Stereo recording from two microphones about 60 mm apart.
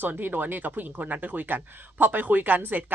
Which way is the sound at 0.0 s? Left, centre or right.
Right.